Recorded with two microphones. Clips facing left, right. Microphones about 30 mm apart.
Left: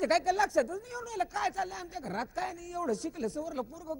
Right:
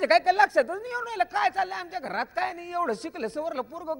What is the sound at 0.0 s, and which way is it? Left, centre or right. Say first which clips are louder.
Speech: right 7 dB; right.